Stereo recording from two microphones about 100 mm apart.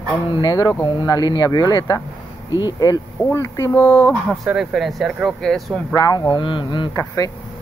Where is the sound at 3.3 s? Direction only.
30° left (ahead or behind).